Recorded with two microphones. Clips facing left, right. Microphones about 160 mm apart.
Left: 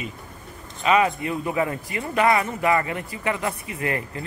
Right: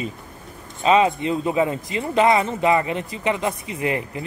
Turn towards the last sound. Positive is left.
turn(degrees=-20)  # may be behind; listen again after turning